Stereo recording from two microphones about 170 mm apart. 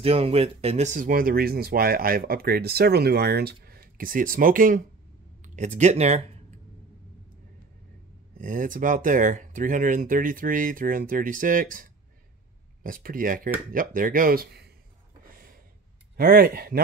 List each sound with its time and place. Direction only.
0.0 s speech: 35° right (ahead or behind)
8.4 s speech: 50° right (ahead or behind); by 14.7 s 70° right (ahead or behind)
15.3 s a sound: 60° right (ahead or behind)
16.2 s speech: 65° right (ahead or behind)